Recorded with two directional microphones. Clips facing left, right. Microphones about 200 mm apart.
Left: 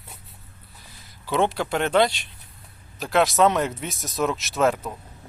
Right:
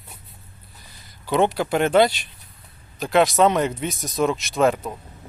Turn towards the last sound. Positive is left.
turn(degrees=0)  # may be behind; listen again after turning